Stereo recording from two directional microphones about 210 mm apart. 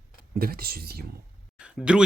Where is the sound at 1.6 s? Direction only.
5° right (ahead or behind).